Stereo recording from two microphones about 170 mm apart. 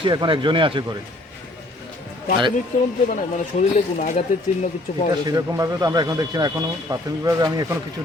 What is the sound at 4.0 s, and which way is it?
Speech, 45° left (ahead or behind).